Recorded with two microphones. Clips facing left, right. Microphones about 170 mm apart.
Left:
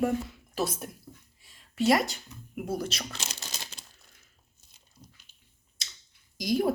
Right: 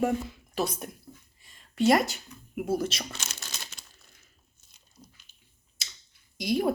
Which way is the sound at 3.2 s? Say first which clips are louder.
Left 2 dB; 30° left (ahead or behind).